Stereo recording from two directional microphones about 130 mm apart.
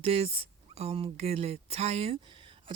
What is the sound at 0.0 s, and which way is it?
Speech, 50° right (ahead or behind).